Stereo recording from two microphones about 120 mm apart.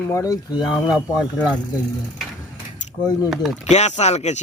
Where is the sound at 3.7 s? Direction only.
70° left (ahead or behind).